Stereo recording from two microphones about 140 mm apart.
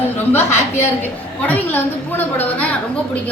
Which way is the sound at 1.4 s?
10° left (ahead or behind).